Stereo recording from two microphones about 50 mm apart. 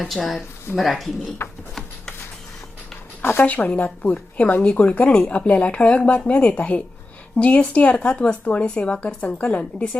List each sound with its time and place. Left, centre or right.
0.0 s speech: centre
3.4 s speech: left